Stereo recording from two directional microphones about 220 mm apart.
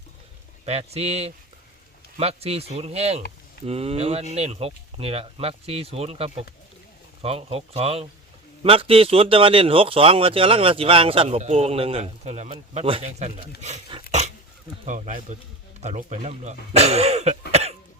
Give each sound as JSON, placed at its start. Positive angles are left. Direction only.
{"t": 0.6, "sound": "speech", "side_deg": -30}
{"t": 14.1, "sound": "dog", "side_deg": -30}
{"t": 14.8, "sound": "speech", "side_deg": -35}
{"t": 17.5, "sound": "cough", "side_deg": -30}